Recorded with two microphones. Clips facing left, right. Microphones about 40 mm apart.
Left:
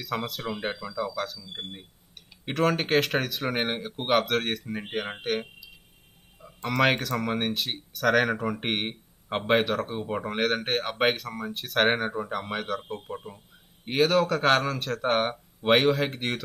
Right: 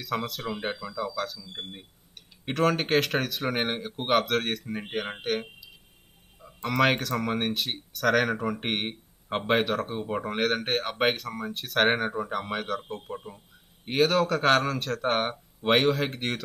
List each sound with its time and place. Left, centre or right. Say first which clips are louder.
0.0 s speech: even; centre